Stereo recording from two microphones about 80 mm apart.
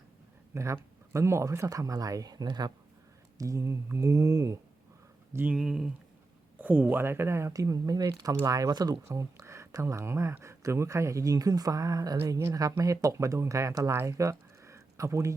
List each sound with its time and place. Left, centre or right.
0.5 s speech: right
3.3 s speech: right
5.5 s speech: centre
6.6 s speech: right
7.5 s speech: right
9.0 s speech: right